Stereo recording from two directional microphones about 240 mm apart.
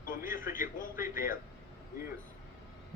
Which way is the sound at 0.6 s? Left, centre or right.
Left.